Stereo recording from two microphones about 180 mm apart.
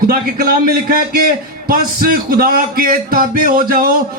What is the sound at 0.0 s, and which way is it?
A man's voice, 55° right (ahead or behind).